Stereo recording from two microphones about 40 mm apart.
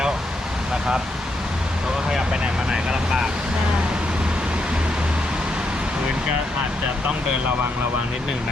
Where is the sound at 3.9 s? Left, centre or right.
Right.